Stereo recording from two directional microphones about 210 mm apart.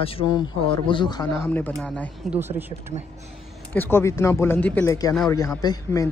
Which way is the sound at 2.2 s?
10° right (ahead or behind).